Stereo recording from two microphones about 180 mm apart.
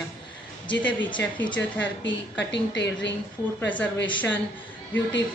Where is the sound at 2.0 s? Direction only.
75° left (ahead or behind).